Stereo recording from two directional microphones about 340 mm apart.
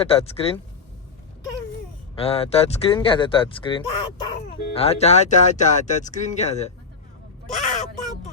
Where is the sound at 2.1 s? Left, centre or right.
Centre.